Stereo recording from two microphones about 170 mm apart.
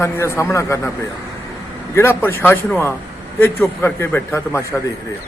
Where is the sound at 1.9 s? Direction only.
15° left (ahead or behind).